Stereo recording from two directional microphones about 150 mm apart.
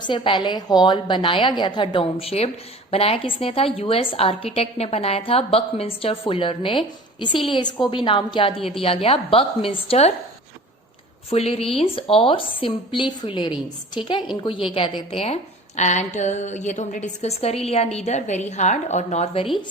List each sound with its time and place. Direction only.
0.0 s a woman's voice: 30° left (ahead or behind)
11.3 s a woman's voice: 40° left (ahead or behind)